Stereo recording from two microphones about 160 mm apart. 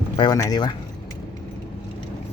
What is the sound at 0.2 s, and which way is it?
Speech, 25° left (ahead or behind).